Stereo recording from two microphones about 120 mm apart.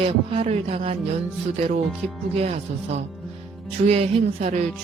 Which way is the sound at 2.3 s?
60° right (ahead or behind).